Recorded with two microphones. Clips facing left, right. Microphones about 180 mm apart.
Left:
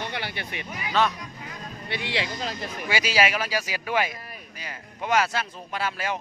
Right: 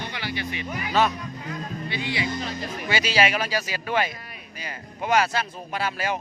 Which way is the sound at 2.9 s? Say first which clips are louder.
Right 1 dB; 10° left (ahead or behind).